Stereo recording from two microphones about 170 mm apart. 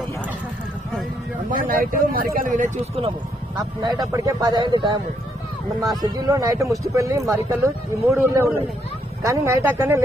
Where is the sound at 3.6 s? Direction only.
25° right (ahead or behind).